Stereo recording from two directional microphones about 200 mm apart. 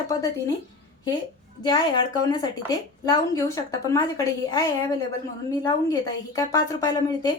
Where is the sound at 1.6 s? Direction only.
20° left (ahead or behind).